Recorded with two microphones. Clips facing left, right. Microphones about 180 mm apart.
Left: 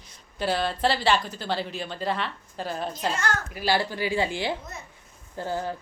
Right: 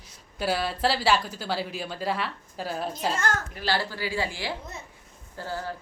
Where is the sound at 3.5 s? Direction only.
15° left (ahead or behind).